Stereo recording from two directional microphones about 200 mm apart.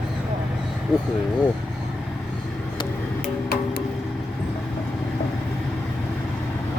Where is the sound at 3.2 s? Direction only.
50° left (ahead or behind).